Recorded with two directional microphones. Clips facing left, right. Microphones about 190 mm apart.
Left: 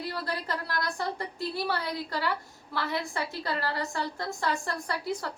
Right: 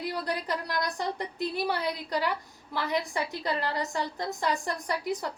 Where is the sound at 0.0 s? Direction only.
15° right (ahead or behind).